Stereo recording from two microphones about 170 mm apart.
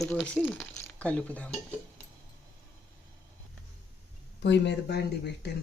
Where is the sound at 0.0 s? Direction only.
5° left (ahead or behind).